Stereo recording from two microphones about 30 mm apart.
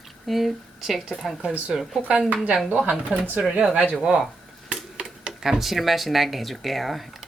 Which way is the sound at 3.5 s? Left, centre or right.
Right.